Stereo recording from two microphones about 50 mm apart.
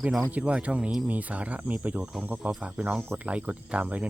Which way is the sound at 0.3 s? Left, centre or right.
Right.